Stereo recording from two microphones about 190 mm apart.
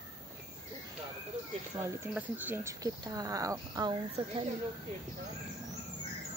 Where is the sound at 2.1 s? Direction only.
10° right (ahead or behind).